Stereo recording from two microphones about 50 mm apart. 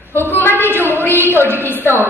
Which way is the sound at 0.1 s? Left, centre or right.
Left.